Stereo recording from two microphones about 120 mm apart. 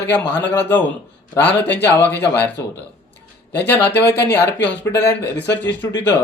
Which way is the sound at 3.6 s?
15° left (ahead or behind).